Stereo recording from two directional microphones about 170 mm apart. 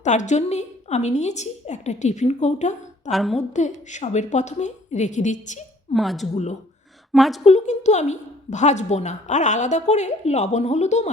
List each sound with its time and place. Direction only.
0.0 s a woman's voice: 45° left (ahead or behind)
3.1 s a woman's voice: centre (ahead or behind)
3.3 s a woman's voice: 45° left (ahead or behind)
5.9 s a woman's voice: centre (ahead or behind)
6.3 s speech: 40° left (ahead or behind)
7.1 s a woman's voice: centre (ahead or behind)
7.4 s a woman's voice: 45° left (ahead or behind)